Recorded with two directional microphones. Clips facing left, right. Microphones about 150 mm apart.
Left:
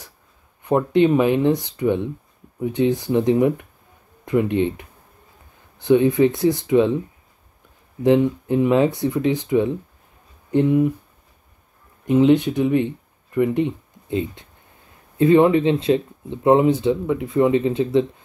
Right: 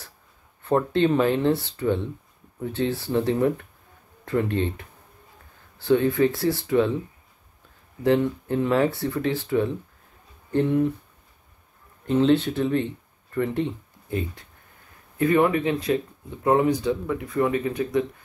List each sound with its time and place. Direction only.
0.7 s speech: 15° left (ahead or behind)
8.0 s speech: 15° left (ahead or behind)
12.1 s speech: 15° left (ahead or behind)